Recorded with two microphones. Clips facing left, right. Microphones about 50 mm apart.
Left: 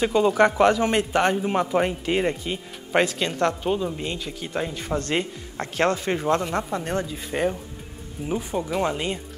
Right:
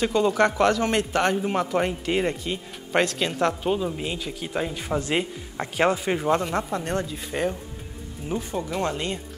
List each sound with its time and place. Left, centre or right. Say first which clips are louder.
0.0 s speech: left 2 dB; centre